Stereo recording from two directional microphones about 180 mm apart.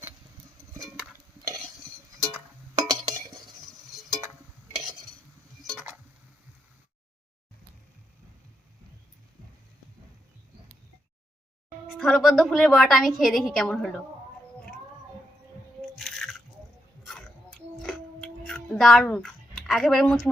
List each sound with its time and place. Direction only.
1.1 s stir: 15° right (ahead or behind)
2.7 s chink: 20° right (ahead or behind)
4.2 s stir: centre (ahead or behind)
11.9 s a woman's voice: centre (ahead or behind)
15.8 s biting: centre (ahead or behind)
17.7 s a sound: 5° left (ahead or behind)